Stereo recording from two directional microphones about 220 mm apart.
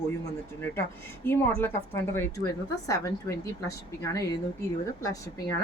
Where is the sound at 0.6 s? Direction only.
10° left (ahead or behind).